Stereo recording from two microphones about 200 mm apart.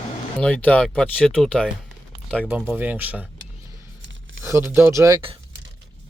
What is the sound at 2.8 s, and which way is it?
Speech, 10° right (ahead or behind).